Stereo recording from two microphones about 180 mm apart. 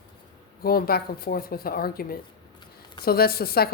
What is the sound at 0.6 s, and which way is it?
A woman's voice, 55° left (ahead or behind).